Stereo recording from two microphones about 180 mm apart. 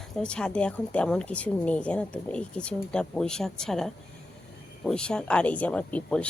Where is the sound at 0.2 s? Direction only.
5° left (ahead or behind).